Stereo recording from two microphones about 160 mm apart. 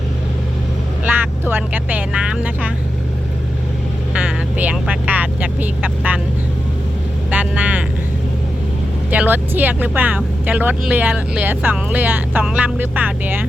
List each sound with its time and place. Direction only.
1.0 s speech: 10° right (ahead or behind)
4.1 s vehicle: 5° right (ahead or behind)
7.3 s vehicle: 10° right (ahead or behind)
9.0 s speech: 10° right (ahead or behind)